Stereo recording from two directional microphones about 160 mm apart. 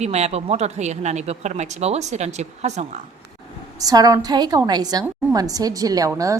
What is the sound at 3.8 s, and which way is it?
A woman's voice, 25° right (ahead or behind).